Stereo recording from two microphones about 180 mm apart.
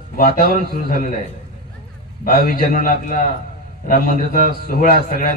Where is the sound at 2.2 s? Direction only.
50° left (ahead or behind).